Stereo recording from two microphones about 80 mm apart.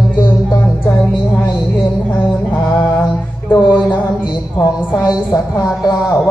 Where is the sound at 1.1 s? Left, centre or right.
Left.